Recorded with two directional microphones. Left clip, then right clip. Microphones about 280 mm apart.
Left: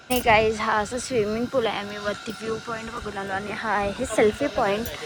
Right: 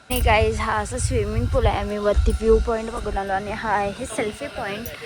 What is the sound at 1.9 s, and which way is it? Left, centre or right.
Speech, centre.